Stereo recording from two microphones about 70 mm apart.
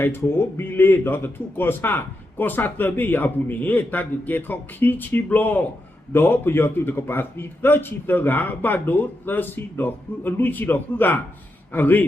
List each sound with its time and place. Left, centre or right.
0.0 s a man's voice: left